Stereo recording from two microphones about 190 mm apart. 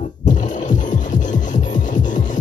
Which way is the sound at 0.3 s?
40° left (ahead or behind).